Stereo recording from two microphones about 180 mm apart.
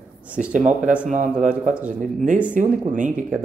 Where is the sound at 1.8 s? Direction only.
45° right (ahead or behind).